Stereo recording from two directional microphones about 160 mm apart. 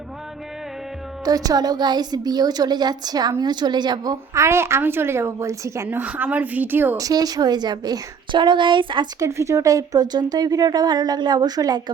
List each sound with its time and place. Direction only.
1.2 s a woman's voice: 25° right (ahead or behind)